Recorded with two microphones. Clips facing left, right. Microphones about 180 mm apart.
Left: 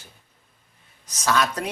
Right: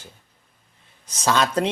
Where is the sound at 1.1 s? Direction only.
30° right (ahead or behind).